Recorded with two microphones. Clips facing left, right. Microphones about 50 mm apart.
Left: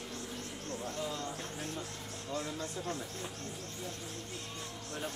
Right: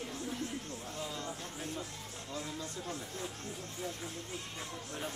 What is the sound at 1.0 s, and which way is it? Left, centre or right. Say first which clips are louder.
Music: left 2 dB; centre.